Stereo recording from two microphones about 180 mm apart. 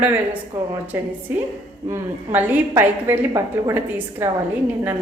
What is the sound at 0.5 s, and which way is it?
A woman's voice, 10° right (ahead or behind).